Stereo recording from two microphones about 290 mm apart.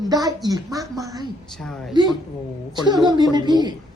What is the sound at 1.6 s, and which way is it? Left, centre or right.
Speech, centre.